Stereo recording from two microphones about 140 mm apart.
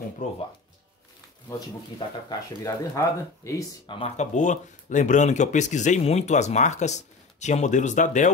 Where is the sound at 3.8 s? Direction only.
40° left (ahead or behind).